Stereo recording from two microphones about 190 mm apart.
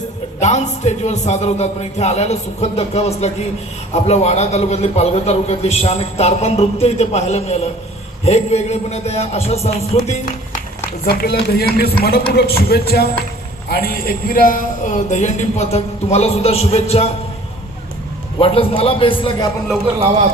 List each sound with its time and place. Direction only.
0.3 s a man's voice: 40° left (ahead or behind)
10.1 s music: 35° left (ahead or behind)
11.0 s a man's voice: 50° left (ahead or behind); by 17.1 s 35° left (ahead or behind)
18.3 s a man's voice: 30° left (ahead or behind)